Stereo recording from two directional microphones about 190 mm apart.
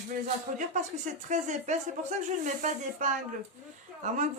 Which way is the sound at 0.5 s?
40° right (ahead or behind).